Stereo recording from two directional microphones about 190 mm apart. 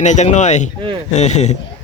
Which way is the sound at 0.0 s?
40° left (ahead or behind).